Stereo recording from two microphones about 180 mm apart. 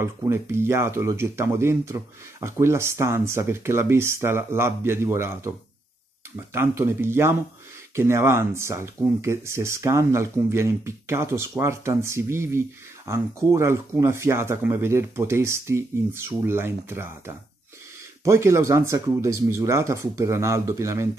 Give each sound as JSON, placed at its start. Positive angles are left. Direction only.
{"t": 0.0, "sound": "speech", "side_deg": -15}
{"t": 18.2, "sound": "speech", "side_deg": -15}